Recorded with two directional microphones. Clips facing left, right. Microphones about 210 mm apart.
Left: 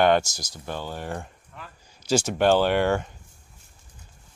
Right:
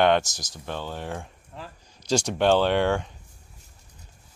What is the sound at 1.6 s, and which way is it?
Speech, 30° right (ahead or behind).